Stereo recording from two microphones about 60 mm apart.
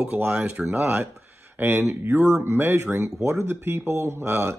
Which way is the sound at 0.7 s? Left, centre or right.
Right.